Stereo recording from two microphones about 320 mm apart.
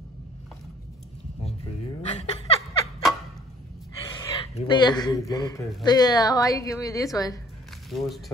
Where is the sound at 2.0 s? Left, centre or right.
Centre.